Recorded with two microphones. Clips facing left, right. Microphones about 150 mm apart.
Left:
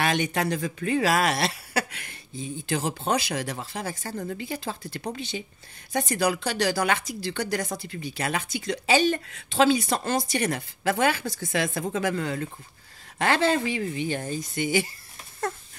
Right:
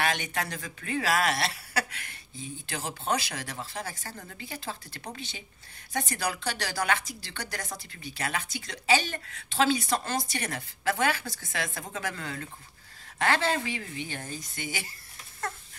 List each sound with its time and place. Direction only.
0.0 s speech: 20° left (ahead or behind)
4.0 s speech: 30° left (ahead or behind)
4.4 s a woman's voice: 20° left (ahead or behind)
13.7 s speech: 20° left (ahead or behind)